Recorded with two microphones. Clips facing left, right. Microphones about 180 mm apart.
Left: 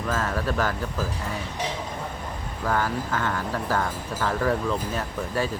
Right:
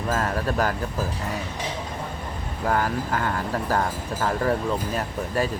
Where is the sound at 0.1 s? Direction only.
35° right (ahead or behind).